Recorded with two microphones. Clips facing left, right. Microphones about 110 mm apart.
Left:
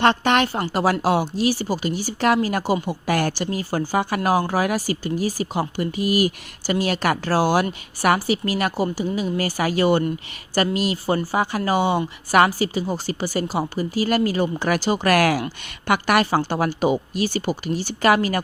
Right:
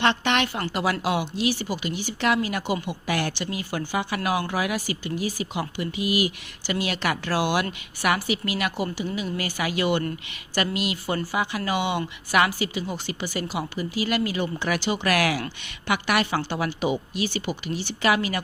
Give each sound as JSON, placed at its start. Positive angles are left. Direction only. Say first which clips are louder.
{"t": 0.0, "sound": "speech", "louder": "left 5 dB", "side_deg": 40}